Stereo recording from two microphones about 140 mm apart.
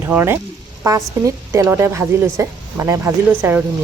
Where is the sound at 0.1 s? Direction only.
15° right (ahead or behind).